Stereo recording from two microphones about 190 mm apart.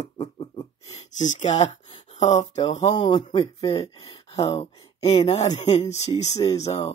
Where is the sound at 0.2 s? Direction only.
30° left (ahead or behind).